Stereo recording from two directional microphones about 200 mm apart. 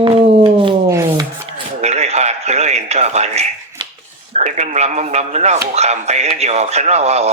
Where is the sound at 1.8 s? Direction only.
35° right (ahead or behind).